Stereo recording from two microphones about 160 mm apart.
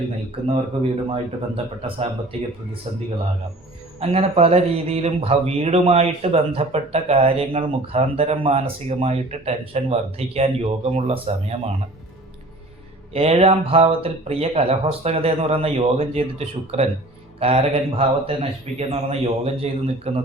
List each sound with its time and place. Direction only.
0.5 s speech: 40° right (ahead or behind)
4.0 s speech: 40° right (ahead or behind)
13.1 s speech: 40° right (ahead or behind)